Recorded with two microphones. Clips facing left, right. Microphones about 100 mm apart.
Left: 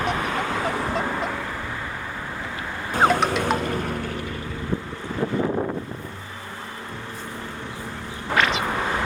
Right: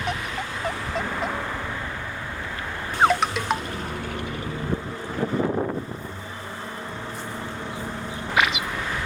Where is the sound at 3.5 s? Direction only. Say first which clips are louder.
Left 2 dB; centre (ahead or behind).